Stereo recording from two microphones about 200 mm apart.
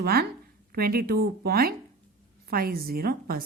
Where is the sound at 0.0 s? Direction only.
50° right (ahead or behind).